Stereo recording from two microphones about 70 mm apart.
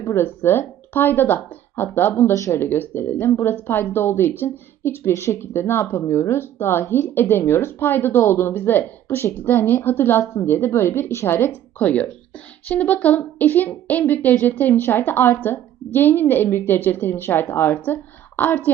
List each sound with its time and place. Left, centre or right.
0.2 s a woman's voice: left
2.3 s speech: left
2.6 s a woman's voice: left
11.8 s a woman's voice: left